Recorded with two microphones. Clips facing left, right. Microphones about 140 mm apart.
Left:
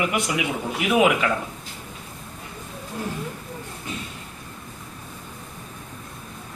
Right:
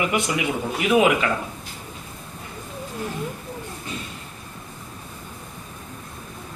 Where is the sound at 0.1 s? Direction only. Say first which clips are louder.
Right 1 dB; 5° left (ahead or behind).